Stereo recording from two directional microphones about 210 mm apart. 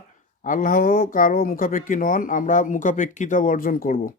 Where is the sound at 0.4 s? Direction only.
40° left (ahead or behind).